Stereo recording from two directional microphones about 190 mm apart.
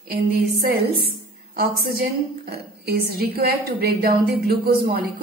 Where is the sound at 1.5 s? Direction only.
55° right (ahead or behind).